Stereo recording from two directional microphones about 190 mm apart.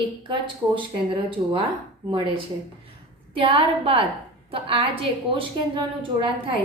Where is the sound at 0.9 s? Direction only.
25° right (ahead or behind).